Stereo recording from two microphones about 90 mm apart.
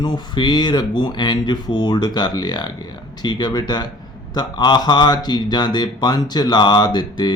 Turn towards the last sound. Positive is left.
turn(degrees=55)  # may be behind; listen again after turning